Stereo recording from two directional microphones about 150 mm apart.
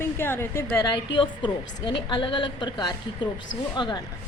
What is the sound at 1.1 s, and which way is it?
A woman's voice, 35° left (ahead or behind).